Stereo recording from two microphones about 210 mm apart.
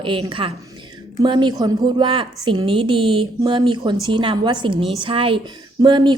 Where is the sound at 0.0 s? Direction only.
25° right (ahead or behind).